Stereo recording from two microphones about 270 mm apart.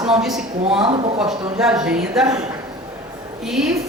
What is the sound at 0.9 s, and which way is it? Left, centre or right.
Speech, centre.